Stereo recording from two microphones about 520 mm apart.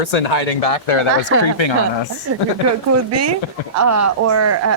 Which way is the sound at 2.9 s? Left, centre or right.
Right.